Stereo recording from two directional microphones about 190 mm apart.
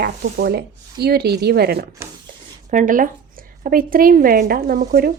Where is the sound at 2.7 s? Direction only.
45° right (ahead or behind).